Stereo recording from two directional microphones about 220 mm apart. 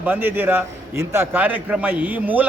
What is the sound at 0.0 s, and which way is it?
A man's voice, 10° right (ahead or behind).